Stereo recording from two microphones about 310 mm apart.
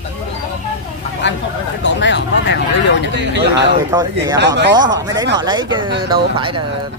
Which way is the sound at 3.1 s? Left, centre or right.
Right.